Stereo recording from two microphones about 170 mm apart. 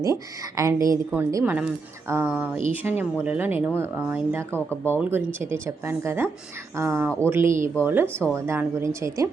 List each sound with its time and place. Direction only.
0.0 s speech: 20° right (ahead or behind)
8.0 s speech: 5° left (ahead or behind)
8.4 s speech: 15° right (ahead or behind)